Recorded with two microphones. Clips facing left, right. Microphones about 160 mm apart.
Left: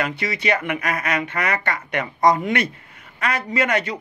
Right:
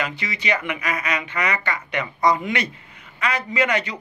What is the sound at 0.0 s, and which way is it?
Speech, 50° left (ahead or behind).